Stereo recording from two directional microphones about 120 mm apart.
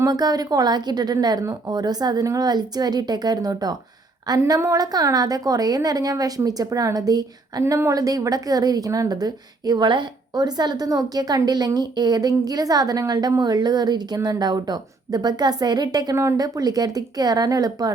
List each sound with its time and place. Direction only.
0.0 s a woman's voice: 35° right (ahead or behind)